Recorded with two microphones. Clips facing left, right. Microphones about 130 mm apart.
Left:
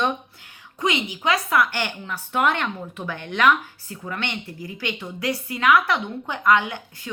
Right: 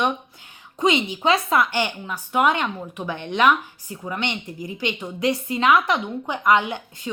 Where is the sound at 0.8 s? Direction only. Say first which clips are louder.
Right 4 dB; 25° right (ahead or behind).